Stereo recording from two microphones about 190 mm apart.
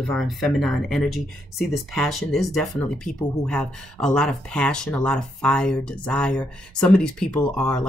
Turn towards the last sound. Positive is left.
turn(degrees=5)  # may be behind; listen again after turning